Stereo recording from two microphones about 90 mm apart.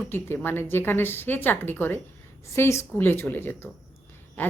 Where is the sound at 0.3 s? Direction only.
25° left (ahead or behind).